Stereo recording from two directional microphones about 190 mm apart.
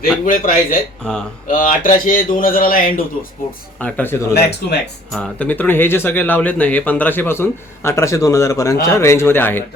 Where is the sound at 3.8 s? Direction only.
10° left (ahead or behind).